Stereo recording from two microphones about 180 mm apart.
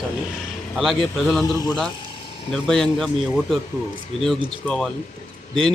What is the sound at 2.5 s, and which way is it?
A man's voice, centre (ahead or behind).